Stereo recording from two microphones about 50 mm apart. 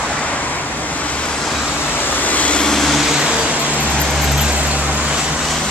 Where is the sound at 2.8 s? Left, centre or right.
Centre.